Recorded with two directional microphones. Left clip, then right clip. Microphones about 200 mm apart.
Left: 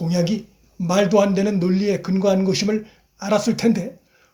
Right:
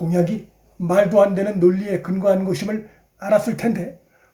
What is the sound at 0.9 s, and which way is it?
A man's voice, 25° left (ahead or behind).